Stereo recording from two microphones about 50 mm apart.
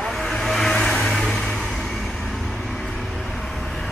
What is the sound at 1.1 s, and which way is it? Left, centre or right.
Vehicle, centre.